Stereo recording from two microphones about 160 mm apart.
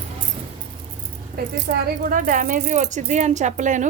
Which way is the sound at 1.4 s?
75° right (ahead or behind).